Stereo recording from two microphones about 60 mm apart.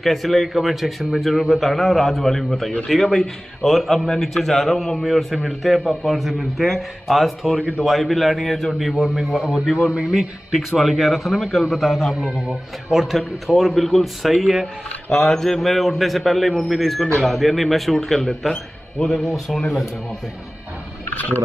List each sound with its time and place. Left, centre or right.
0.0 s a man's voice: centre
10.1 s a man's voice: centre
12.2 s speech: centre
12.9 s a man's voice: centre
21.1 s a sound: left